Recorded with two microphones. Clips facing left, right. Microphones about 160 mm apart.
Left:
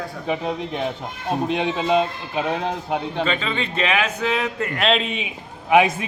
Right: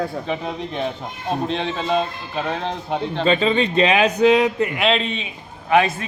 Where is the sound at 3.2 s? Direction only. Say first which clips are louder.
Right 7 dB; 25° right (ahead or behind).